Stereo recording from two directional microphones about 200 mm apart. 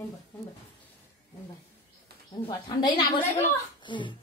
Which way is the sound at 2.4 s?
25° left (ahead or behind).